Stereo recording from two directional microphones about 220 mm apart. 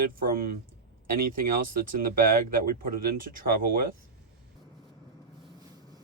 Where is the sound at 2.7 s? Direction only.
40° right (ahead or behind).